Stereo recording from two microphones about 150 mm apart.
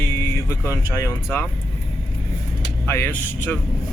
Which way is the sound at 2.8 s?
15° left (ahead or behind).